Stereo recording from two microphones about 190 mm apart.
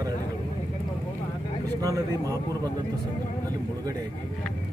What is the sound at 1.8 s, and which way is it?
Speech, 20° right (ahead or behind).